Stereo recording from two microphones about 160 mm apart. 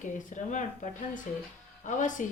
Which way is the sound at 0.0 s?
55° left (ahead or behind).